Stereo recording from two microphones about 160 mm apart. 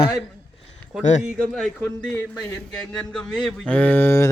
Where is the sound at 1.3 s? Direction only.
5° left (ahead or behind).